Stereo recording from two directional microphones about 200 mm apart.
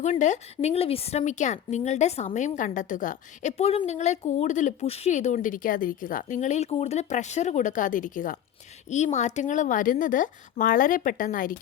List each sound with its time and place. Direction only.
0.0 s speech: 35° left (ahead or behind)